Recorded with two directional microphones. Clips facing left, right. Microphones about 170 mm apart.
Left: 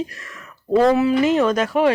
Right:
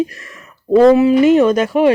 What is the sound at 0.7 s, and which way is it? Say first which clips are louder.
Speech: right 6 dB; 10° right (ahead or behind).